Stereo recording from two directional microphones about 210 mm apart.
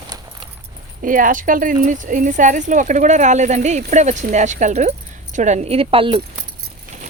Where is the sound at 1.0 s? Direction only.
40° right (ahead or behind).